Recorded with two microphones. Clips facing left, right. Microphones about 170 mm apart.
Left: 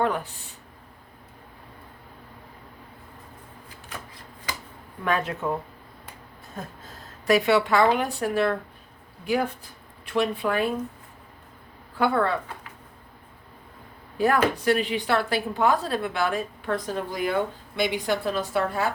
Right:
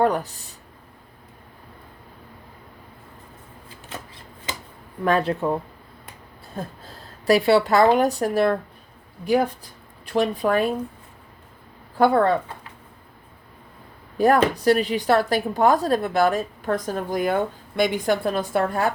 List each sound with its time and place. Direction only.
0.0 s a sound: 40° right (ahead or behind)
3.9 s shuffling cards: 25° right (ahead or behind)
5.0 s speech: 35° right (ahead or behind)
6.6 s a woman's voice: 35° right (ahead or behind)
11.9 s speech: 40° right (ahead or behind)
14.2 s a woman's voice: 35° right (ahead or behind)